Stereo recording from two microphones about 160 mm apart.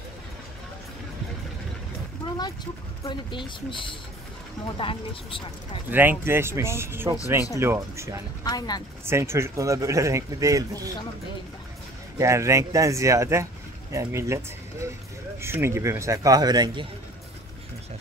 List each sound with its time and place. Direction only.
2.2 s speech: 25° left (ahead or behind)
5.9 s speech: 15° right (ahead or behind)
8.5 s speech: 25° left (ahead or behind)
9.0 s speech: 15° right (ahead or behind)
12.2 s speech: 20° right (ahead or behind)